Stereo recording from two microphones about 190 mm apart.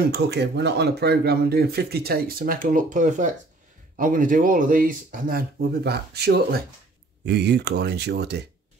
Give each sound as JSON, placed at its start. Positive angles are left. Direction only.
{"t": 0.1, "sound": "speech", "side_deg": -60}